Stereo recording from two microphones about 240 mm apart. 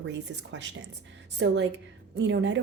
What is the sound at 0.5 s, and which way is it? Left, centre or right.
Speech, right.